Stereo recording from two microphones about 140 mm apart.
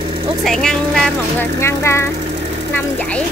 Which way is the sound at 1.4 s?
20° left (ahead or behind).